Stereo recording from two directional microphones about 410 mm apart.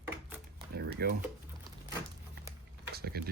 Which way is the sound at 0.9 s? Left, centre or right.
Right.